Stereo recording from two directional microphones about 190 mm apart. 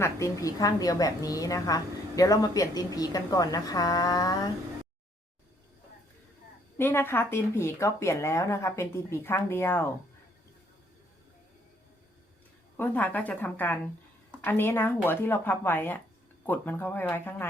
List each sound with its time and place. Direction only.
0.0 s a woman's voice: 15° left (ahead or behind)
6.7 s speech: 10° left (ahead or behind)
12.7 s speech: 10° left (ahead or behind)